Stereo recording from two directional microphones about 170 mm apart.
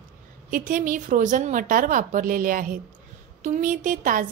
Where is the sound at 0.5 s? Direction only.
50° right (ahead or behind).